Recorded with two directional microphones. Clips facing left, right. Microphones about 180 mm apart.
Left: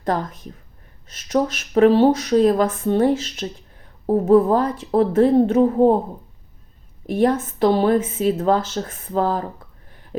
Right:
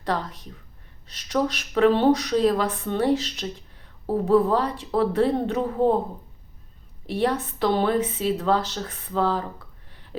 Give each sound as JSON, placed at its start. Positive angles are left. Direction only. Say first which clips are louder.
{"t": 0.0, "sound": "speech", "louder": "left 4 dB", "side_deg": 45}
{"t": 7.1, "sound": "speech", "louder": "left 6 dB", "side_deg": 45}